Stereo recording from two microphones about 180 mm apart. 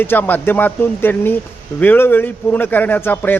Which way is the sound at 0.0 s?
10° left (ahead or behind).